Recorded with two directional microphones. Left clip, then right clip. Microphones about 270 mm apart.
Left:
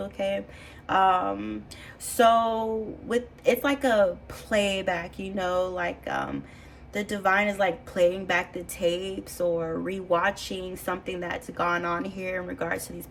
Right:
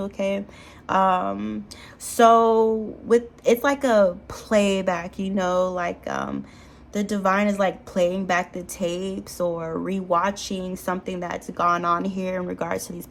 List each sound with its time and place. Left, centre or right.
0.0 s a woman's voice: centre